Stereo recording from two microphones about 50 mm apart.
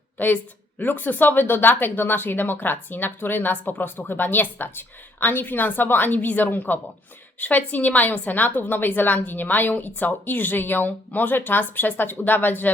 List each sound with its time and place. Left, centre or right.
0.2 s a woman's voice: left